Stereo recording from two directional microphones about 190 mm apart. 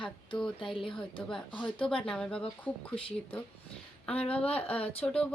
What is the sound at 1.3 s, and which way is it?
Speech, 5° left (ahead or behind).